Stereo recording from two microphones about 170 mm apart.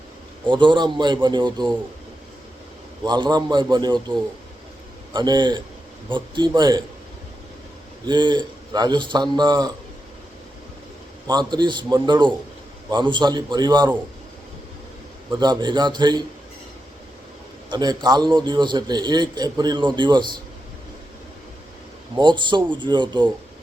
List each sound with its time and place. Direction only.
0.4 s a man's voice: 25° right (ahead or behind)
3.0 s a man's voice: 25° right (ahead or behind)
8.0 s a man's voice: 25° right (ahead or behind)
11.3 s a man's voice: 25° right (ahead or behind)
15.4 s a man's voice: 25° right (ahead or behind)
17.7 s a man's voice: 25° right (ahead or behind)
22.2 s a man's voice: 25° right (ahead or behind)